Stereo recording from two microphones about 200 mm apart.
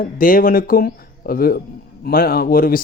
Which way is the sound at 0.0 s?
45° left (ahead or behind).